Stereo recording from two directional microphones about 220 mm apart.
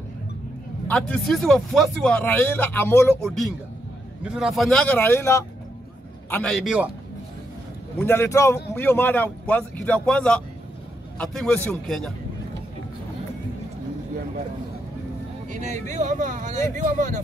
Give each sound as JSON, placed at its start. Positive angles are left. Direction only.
{"t": 0.8, "sound": "speech", "side_deg": 5}
{"t": 8.0, "sound": "a man's voice", "side_deg": 10}
{"t": 15.5, "sound": "speech", "side_deg": -35}